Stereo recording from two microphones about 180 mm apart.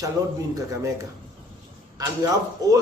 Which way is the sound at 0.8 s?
15° right (ahead or behind).